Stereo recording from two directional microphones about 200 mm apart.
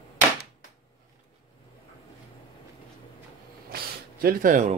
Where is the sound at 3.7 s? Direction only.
50° right (ahead or behind).